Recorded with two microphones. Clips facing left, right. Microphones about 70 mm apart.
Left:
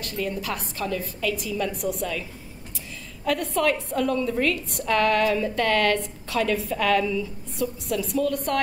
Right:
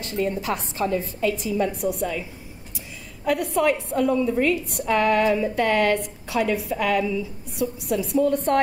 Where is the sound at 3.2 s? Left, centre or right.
Centre.